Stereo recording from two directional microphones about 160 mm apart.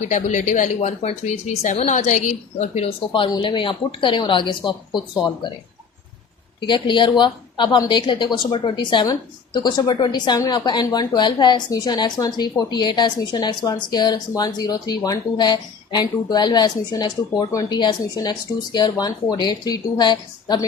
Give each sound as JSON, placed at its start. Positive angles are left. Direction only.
{"t": 0.1, "sound": "speech", "side_deg": 50}
{"t": 6.6, "sound": "a woman's voice", "side_deg": 30}